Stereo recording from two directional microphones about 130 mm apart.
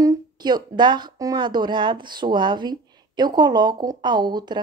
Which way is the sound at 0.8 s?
35° right (ahead or behind).